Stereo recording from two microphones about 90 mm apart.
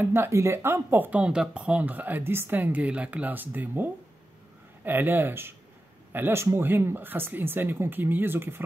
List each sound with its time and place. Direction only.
0.0 s speech: 25° right (ahead or behind)